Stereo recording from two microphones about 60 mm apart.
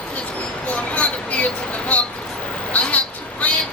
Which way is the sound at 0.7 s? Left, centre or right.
Left.